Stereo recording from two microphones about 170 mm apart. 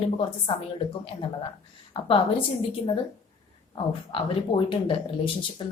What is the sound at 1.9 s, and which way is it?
Speech, 30° left (ahead or behind).